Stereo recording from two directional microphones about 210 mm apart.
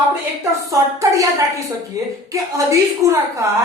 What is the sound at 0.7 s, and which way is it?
A woman's voice, 15° right (ahead or behind).